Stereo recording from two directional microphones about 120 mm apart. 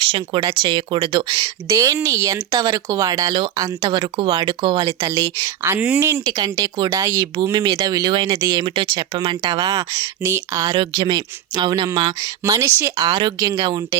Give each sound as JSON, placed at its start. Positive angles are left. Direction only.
{"t": 0.0, "sound": "speech", "side_deg": -45}
{"t": 6.2, "sound": "speech", "side_deg": -35}
{"t": 8.4, "sound": "speech", "side_deg": -25}
{"t": 8.6, "sound": "speech", "side_deg": -45}
{"t": 10.8, "sound": "speech", "side_deg": -40}
{"t": 13.1, "sound": "speech", "side_deg": -35}